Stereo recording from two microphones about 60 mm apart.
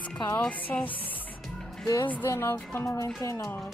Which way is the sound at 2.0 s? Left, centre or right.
Left.